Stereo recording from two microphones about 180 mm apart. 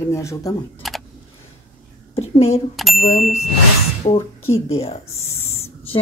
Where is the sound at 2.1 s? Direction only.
35° left (ahead or behind).